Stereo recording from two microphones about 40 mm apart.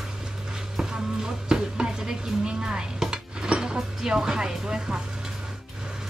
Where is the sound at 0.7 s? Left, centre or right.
Centre.